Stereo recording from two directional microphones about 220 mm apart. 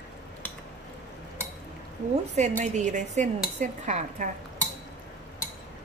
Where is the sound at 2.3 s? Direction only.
30° right (ahead or behind).